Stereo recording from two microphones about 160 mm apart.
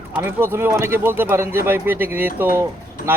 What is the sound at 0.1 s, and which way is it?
Speech, 15° right (ahead or behind).